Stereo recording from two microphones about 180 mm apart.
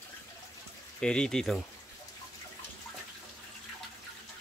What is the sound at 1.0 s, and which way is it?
Speech, 5° left (ahead or behind).